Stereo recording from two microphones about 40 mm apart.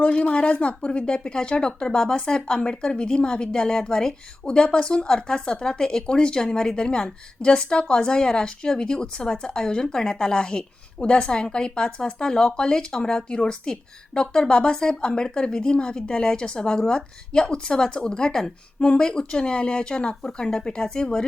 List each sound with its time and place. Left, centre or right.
0.3 s a woman's voice: left